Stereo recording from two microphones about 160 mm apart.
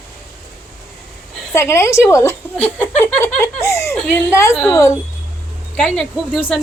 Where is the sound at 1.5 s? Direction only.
15° left (ahead or behind).